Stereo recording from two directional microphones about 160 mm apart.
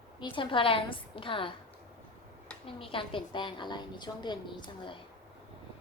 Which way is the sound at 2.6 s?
35° left (ahead or behind).